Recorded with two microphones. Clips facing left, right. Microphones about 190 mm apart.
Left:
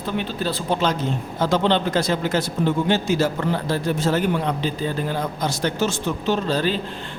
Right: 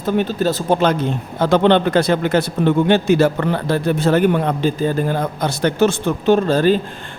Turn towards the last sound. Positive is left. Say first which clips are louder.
# right 8 dB
turn(degrees=-50)  # may be behind; listen again after turning